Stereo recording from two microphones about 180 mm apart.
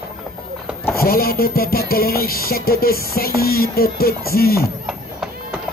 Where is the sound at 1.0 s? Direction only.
55° left (ahead or behind).